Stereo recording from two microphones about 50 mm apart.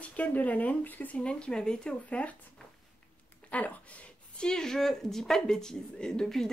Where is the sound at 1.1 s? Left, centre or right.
Left.